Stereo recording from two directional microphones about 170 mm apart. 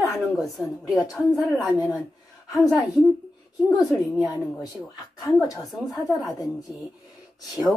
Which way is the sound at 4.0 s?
10° right (ahead or behind).